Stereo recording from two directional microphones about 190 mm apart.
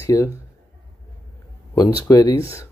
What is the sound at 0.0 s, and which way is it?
Speech, 15° left (ahead or behind).